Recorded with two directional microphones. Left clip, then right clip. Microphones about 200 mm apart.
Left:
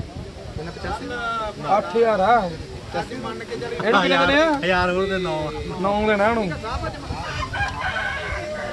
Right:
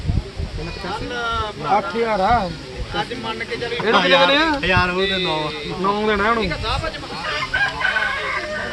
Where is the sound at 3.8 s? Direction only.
40° left (ahead or behind).